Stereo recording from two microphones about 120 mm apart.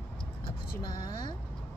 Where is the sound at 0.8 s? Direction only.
40° left (ahead or behind).